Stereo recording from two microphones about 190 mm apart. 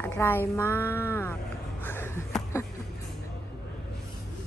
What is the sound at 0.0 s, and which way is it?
A woman's voice, 10° left (ahead or behind).